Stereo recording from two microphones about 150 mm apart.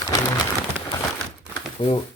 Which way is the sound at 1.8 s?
35° left (ahead or behind).